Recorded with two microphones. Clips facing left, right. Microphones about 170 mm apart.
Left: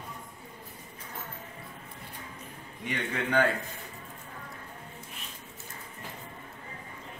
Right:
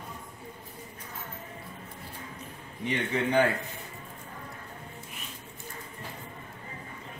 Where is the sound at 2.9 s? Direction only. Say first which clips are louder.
Right 3 dB; 15° right (ahead or behind).